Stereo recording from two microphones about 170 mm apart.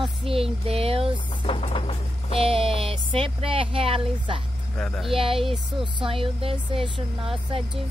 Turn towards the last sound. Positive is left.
turn(degrees=-30)  # may be behind; listen again after turning